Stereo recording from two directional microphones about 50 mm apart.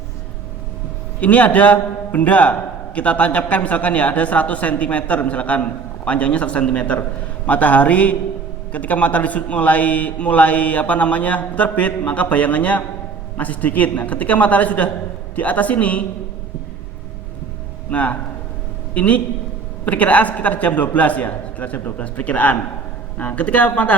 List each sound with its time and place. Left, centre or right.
1.2 s a man's voice: left
17.9 s a man's voice: left